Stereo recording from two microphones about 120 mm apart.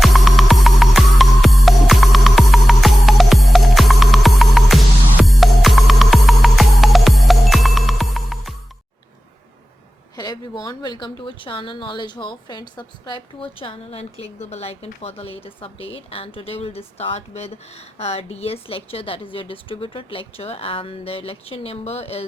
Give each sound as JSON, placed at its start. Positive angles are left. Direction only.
{"t": 0.0, "sound": "music", "side_deg": 0}
{"t": 10.6, "sound": "a woman's voice", "side_deg": 35}